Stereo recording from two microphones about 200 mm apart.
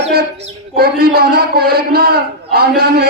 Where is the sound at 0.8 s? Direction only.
50° right (ahead or behind).